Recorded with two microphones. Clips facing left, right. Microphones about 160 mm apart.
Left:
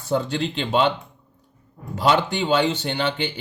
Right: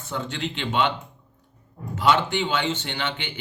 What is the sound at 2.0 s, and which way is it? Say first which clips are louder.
Speech: left 1 dB; 35° left (ahead or behind).